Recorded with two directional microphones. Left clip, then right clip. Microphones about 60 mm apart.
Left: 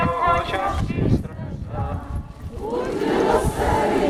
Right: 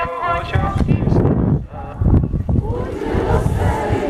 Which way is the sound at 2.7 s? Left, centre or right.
Left.